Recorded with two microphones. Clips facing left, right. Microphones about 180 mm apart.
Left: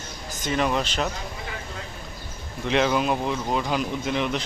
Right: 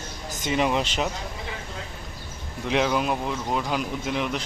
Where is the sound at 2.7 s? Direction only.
5° right (ahead or behind).